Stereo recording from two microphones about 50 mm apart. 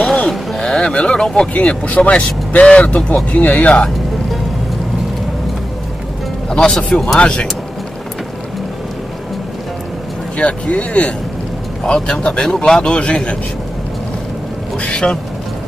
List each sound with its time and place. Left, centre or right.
0.0 s a sound: centre
0.6 s speech: centre
1.5 s speech: left
6.5 s speech: centre
6.9 s speech: centre
7.2 s speech: centre
10.3 s speech: left